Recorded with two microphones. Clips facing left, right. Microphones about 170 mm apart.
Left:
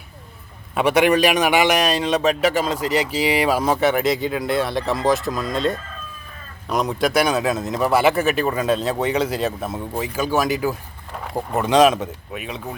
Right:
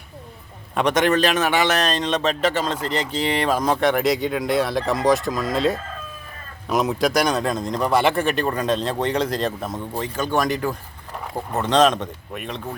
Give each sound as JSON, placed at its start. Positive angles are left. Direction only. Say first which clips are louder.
{"t": 0.7, "sound": "a man's voice", "louder": "left 2 dB", "side_deg": 5}